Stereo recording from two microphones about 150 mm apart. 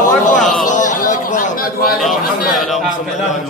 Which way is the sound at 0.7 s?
55° left (ahead or behind).